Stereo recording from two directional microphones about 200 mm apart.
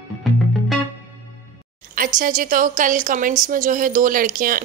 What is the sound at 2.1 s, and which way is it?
A woman's voice, 45° right (ahead or behind).